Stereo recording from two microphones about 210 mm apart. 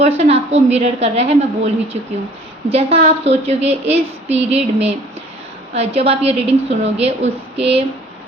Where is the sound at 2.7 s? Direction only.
30° right (ahead or behind).